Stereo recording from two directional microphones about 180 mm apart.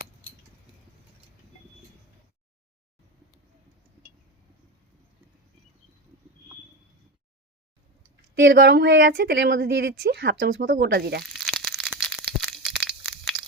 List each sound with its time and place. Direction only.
8.4 s speech: 80° right
10.6 s speech: 55° right (ahead or behind)
11.3 s crushing: centre (ahead or behind)